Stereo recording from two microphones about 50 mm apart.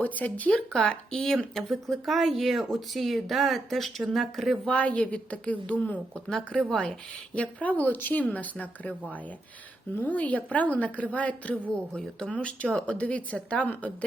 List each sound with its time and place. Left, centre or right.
0.0 s speech: left
0.5 s speech: centre
1.5 s speech: centre
4.7 s a woman's voice: left
6.2 s speech: centre
7.6 s speech: left
9.9 s a woman's voice: left